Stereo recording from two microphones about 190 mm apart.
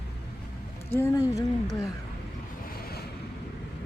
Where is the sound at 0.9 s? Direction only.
15° left (ahead or behind).